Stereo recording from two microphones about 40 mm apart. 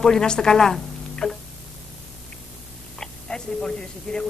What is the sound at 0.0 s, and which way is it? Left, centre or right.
A woman's voice, centre.